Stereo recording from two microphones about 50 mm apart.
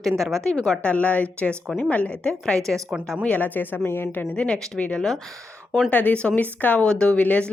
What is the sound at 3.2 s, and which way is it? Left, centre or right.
Speech, left.